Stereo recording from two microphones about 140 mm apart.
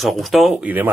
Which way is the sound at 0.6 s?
10° right (ahead or behind).